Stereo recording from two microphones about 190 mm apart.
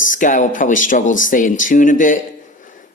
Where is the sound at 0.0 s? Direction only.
45° left (ahead or behind).